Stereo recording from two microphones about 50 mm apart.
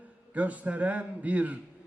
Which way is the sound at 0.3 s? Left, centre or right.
Right.